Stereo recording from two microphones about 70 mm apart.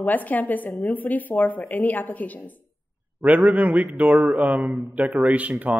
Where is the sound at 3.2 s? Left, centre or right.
Right.